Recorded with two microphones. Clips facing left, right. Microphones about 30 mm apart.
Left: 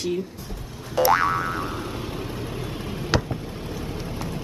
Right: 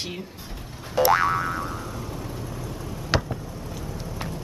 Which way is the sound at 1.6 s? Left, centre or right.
Left.